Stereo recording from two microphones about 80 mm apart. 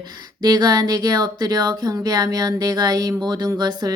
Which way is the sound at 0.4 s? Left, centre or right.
Right.